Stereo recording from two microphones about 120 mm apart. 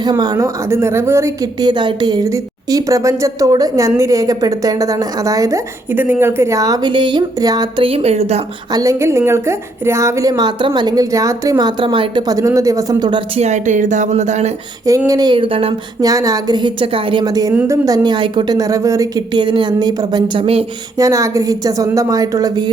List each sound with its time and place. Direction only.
0.0 s a woman's voice: 35° right (ahead or behind)
1.5 s a woman's voice: 40° right (ahead or behind)
7.8 s speech: 50° right (ahead or behind)
8.7 s a woman's voice: 25° right (ahead or behind)
13.4 s speech: 85° right
14.8 s a woman's voice: 30° right (ahead or behind); by 15.7 s 50° right (ahead or behind)
16.0 s a woman's voice: 30° right (ahead or behind); by 20.7 s 50° right (ahead or behind)
21.0 s a woman's voice: 25° right (ahead or behind)